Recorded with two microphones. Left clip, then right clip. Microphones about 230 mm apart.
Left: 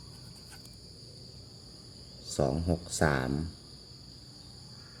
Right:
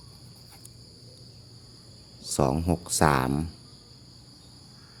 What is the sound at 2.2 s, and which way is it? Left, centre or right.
Speech, right.